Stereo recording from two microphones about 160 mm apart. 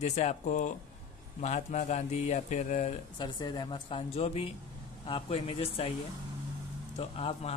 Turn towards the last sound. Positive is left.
turn(degrees=40)  # may be behind; listen again after turning